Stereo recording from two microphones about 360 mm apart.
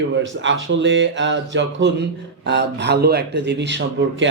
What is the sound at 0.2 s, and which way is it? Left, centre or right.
Speech, right.